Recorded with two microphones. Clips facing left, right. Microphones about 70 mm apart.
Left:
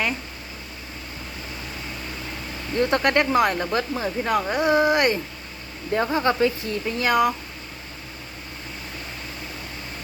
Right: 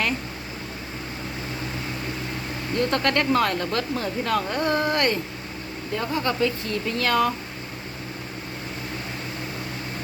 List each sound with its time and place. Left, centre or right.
2.7 s speech: left
6.0 s speech: left